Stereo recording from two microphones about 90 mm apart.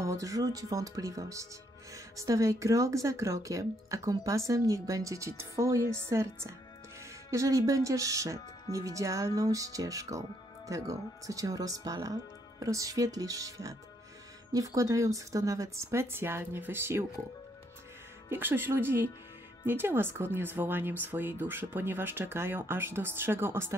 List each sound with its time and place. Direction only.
0.0 s speech: 35° right (ahead or behind)
18.3 s speech: 25° right (ahead or behind)